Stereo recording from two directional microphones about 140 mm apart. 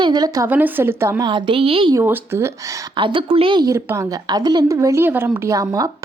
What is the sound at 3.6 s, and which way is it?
A woman's voice, 20° right (ahead or behind).